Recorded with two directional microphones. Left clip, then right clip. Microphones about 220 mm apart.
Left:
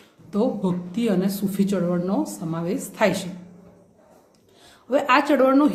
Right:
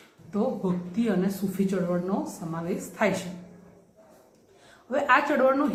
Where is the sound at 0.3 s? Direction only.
50° left (ahead or behind).